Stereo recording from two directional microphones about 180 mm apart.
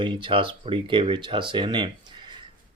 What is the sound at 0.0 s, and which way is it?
Speech, 25° right (ahead or behind).